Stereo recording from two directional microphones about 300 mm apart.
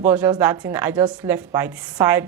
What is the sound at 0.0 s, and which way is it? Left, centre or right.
A woman's voice, centre.